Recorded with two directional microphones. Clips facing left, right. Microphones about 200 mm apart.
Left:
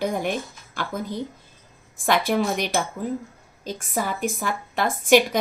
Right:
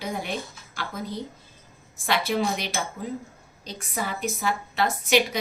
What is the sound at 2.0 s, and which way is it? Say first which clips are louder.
Speech: left 3 dB; 50° left (ahead or behind).